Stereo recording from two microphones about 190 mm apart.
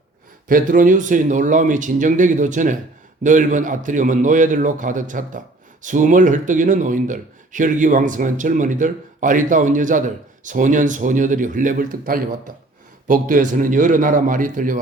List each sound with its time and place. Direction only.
0.4 s speech: 45° right (ahead or behind)